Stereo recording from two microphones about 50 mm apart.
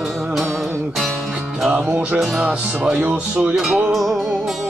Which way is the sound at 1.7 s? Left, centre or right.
Right.